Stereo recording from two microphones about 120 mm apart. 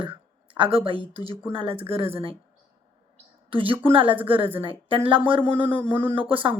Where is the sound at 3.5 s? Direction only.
45° right (ahead or behind).